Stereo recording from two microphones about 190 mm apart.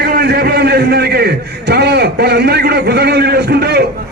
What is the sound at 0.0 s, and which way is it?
A man's voice, 60° right (ahead or behind).